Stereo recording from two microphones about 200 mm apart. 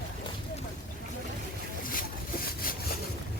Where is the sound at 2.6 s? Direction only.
45° left (ahead or behind).